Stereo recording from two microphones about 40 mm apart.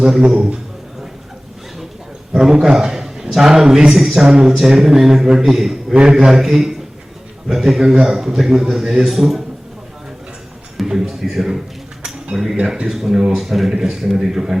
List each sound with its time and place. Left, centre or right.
0.3 s a man's voice: right
2.3 s a man's voice: centre
5.9 s speech: right; by 9.4 s centre
10.8 s music: centre
12.0 s a sound: centre
12.6 s speech: centre